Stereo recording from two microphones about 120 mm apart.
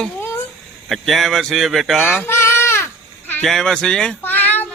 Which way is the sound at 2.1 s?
20° left (ahead or behind).